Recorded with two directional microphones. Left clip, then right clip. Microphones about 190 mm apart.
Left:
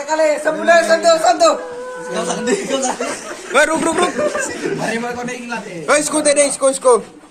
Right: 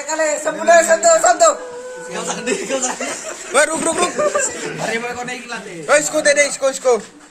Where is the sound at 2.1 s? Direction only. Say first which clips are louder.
Left 3 dB; 35° right (ahead or behind).